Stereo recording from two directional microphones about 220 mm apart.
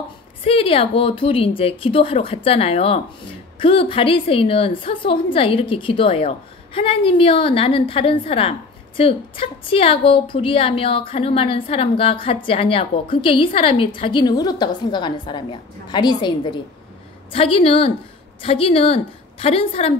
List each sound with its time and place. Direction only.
0.4 s a woman's voice: 25° left (ahead or behind)